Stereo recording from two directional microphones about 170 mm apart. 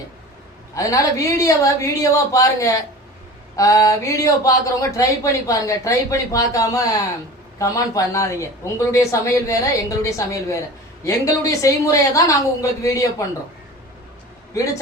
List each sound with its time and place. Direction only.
0.7 s speech: 20° left (ahead or behind)
14.5 s speech: 20° left (ahead or behind)